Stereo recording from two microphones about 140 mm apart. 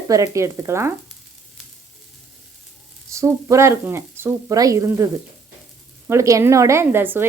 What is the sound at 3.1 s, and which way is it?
A woman's voice, 20° right (ahead or behind).